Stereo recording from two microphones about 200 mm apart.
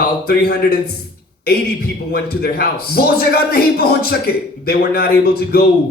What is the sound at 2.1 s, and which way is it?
Speech, 50° left (ahead or behind).